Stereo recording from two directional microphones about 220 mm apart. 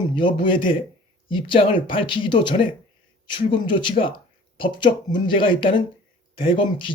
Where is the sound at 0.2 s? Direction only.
20° left (ahead or behind).